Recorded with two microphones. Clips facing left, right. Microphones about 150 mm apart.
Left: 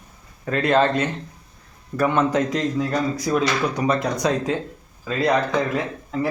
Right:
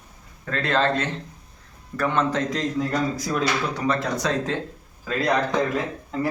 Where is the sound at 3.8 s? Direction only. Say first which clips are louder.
Left 3 dB; 15° left (ahead or behind).